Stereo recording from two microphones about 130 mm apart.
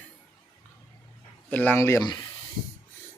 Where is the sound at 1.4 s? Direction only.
15° left (ahead or behind).